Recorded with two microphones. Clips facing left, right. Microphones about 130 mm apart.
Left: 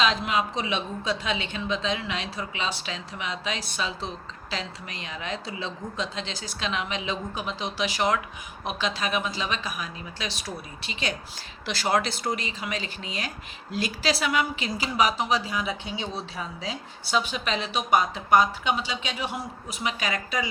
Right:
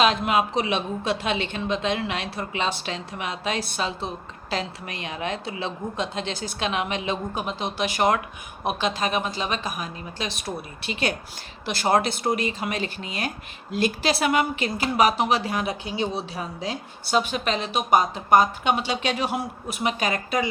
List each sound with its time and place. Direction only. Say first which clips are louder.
0.0 s speech: right 4 dB; 55° right (ahead or behind)
11.6 s speech: right 4 dB; 50° right (ahead or behind); by 19.4 s 75° right (ahead or behind)
19.6 s speech: right 4 dB; 55° right (ahead or behind)